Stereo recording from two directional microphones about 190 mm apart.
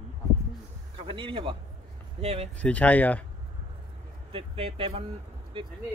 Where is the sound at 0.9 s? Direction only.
25° right (ahead or behind).